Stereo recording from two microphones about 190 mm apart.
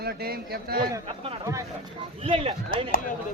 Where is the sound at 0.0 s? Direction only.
55° right (ahead or behind).